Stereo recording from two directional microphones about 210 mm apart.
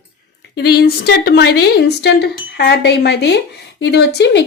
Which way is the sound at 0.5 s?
50° left (ahead or behind).